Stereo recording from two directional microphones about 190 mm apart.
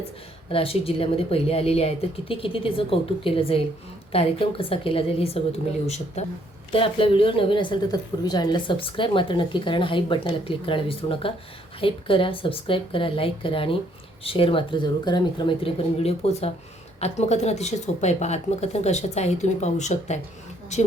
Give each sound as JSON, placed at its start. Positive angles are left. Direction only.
{"t": 0.5, "sound": "a woman's voice", "side_deg": 30}